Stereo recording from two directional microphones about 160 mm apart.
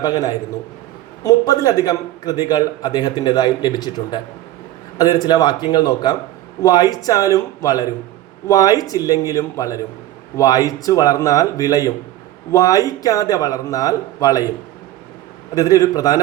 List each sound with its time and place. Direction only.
0.0 s a man's voice: 25° left (ahead or behind)
15.5 s a man's voice: 20° left (ahead or behind)